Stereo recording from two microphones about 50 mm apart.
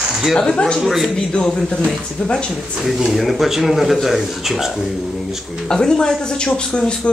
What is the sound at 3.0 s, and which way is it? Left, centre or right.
Speech, centre.